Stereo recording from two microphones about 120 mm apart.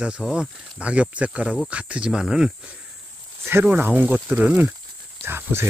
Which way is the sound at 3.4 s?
15° right (ahead or behind).